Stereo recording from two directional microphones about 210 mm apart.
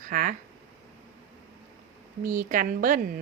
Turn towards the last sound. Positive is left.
turn(degrees=-40)  # may be behind; listen again after turning